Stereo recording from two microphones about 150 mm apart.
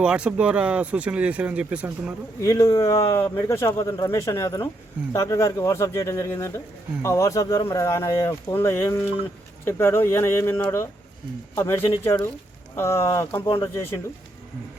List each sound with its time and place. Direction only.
0.0 s speech: 5° right (ahead or behind)
2.4 s speech: 20° left (ahead or behind)